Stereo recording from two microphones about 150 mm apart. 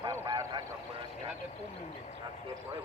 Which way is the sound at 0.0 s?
30° right (ahead or behind).